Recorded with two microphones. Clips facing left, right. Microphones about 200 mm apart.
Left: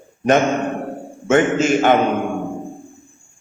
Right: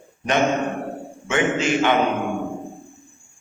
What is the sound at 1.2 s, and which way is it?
Speech, 45° left (ahead or behind).